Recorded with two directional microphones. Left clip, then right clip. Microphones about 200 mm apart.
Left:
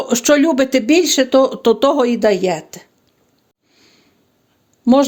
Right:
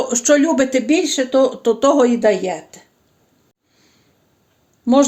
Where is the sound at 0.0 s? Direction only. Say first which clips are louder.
Left 1 dB; 45° left (ahead or behind).